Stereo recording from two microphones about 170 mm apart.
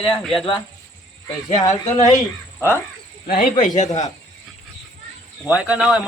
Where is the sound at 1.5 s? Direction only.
45° left (ahead or behind).